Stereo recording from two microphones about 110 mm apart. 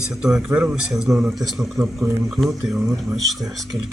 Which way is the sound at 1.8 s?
30° right (ahead or behind).